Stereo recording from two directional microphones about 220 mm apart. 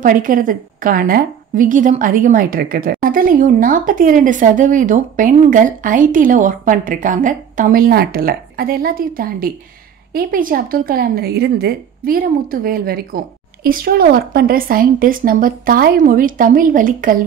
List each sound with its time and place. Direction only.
0.0 s a woman's voice: 40° right (ahead or behind)